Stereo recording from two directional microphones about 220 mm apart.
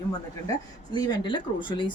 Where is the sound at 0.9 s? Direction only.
20° left (ahead or behind).